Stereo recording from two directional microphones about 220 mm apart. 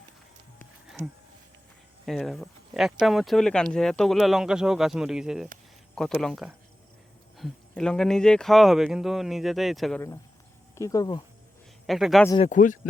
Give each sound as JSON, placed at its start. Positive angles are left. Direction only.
{"t": 2.0, "sound": "speech", "side_deg": 0}
{"t": 10.8, "sound": "speech", "side_deg": 15}
{"t": 11.9, "sound": "speech", "side_deg": 0}
{"t": 12.4, "sound": "speech", "side_deg": 35}